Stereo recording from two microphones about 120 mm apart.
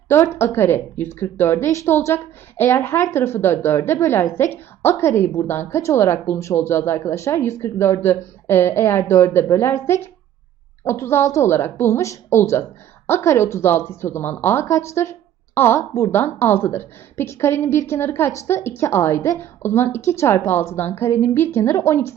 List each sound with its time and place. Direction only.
0.1 s a woman's voice: 20° left (ahead or behind)